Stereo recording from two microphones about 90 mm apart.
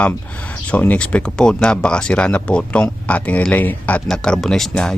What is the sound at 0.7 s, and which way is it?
Speech, 15° left (ahead or behind).